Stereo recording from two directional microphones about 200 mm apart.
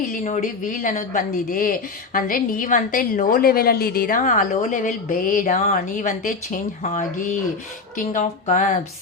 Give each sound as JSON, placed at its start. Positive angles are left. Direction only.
{"t": 0.1, "sound": "speech", "side_deg": 40}